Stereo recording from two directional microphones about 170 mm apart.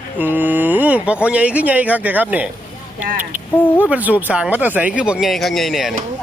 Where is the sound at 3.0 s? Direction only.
50° right (ahead or behind).